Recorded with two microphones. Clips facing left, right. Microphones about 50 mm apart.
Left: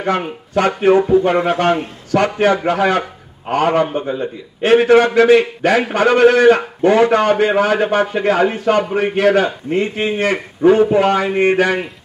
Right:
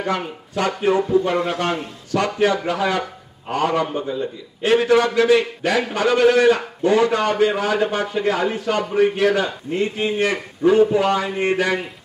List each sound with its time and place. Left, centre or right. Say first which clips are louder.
0.0 s a man's voice: left 5 dB; left